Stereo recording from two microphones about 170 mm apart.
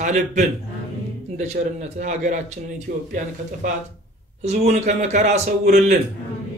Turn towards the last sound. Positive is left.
turn(degrees=-45)  # may be behind; listen again after turning